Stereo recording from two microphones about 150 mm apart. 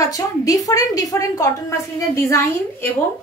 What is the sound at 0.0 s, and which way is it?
A woman's voice, 25° left (ahead or behind).